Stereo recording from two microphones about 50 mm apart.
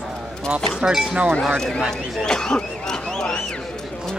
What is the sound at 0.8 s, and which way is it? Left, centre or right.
Speech, centre.